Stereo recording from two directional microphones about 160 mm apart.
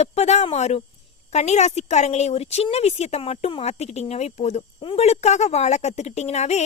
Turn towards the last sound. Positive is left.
turn(degrees=45)  # may be behind; listen again after turning